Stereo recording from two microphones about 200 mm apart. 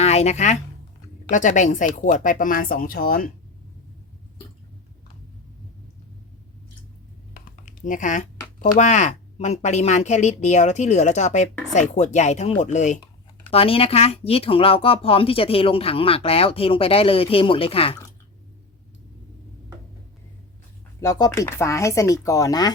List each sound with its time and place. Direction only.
0.0 s a woman's voice: 30° left (ahead or behind)
7.6 s a woman's voice: 40° left (ahead or behind)
21.0 s speech: 15° left (ahead or behind)